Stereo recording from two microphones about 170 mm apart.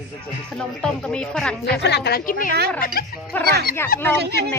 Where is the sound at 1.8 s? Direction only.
75° left (ahead or behind); by 2.5 s 60° left (ahead or behind).